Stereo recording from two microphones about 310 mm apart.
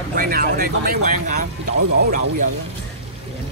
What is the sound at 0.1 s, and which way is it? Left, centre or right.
Speech, right.